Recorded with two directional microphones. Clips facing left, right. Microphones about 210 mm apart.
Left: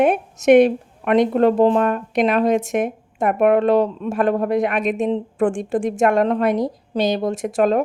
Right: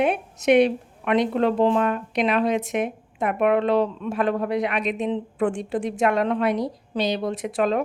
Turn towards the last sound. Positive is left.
turn(degrees=45)  # may be behind; listen again after turning